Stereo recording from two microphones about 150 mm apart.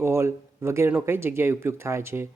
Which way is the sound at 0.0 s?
15° right (ahead or behind).